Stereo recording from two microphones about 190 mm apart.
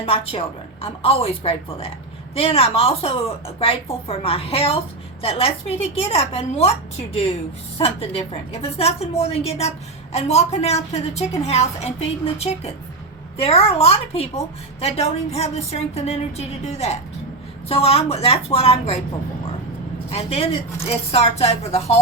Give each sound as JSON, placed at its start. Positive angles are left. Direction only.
{"t": 0.0, "sound": "a woman's voice", "side_deg": 30}
{"t": 20.1, "sound": "a woman's voice", "side_deg": 30}